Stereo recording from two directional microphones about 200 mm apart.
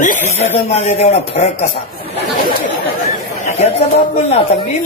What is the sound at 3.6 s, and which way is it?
Speech, 30° left (ahead or behind).